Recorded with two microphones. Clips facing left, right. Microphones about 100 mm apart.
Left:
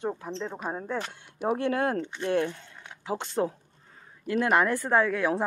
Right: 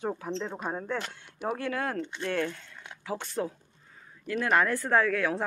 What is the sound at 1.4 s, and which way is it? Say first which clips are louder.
Speech: left 5 dB; 25° left (ahead or behind).